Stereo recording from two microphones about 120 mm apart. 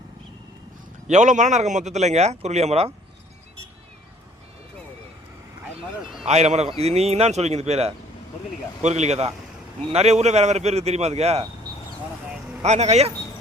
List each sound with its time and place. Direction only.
1.0 s a man's voice: 90° right; by 2.9 s 65° right (ahead or behind)
6.2 s a man's voice: 70° right (ahead or behind)
12.6 s a man's voice: 70° right (ahead or behind)